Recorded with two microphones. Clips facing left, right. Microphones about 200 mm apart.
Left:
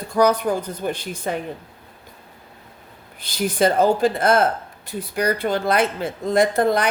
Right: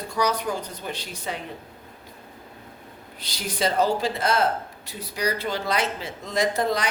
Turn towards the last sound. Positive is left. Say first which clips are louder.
# left 6 dB
turn(degrees=55)  # may be behind; listen again after turning